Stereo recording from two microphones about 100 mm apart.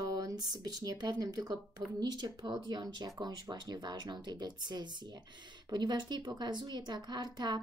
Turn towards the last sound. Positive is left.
turn(degrees=-45)  # may be behind; listen again after turning